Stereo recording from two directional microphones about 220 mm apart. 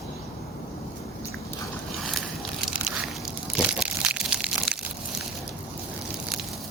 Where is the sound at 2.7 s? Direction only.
Centre (ahead or behind).